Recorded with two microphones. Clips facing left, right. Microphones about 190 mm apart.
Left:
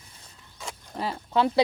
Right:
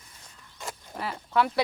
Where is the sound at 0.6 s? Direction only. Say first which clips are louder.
Right 1 dB; centre (ahead or behind).